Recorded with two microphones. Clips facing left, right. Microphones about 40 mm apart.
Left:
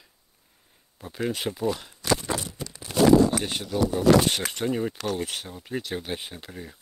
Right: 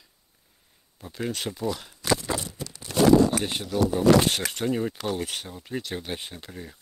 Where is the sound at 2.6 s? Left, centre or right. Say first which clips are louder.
Even; centre.